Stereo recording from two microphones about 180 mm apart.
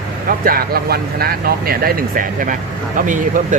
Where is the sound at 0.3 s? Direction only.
55° right (ahead or behind).